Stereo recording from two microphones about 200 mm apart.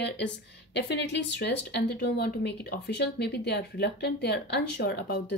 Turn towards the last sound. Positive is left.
turn(degrees=55)  # may be behind; listen again after turning